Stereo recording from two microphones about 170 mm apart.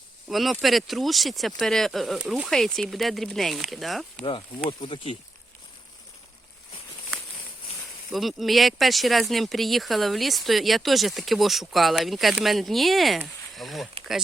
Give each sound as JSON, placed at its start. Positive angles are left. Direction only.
{"t": 0.3, "sound": "speech", "side_deg": 0}
{"t": 4.2, "sound": "speech", "side_deg": 30}
{"t": 8.1, "sound": "speech", "side_deg": 0}